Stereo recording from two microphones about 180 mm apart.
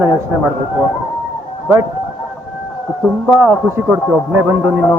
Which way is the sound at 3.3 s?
10° right (ahead or behind).